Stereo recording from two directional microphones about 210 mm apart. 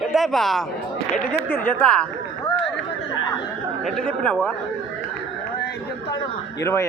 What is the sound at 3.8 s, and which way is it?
Speech, 5° left (ahead or behind).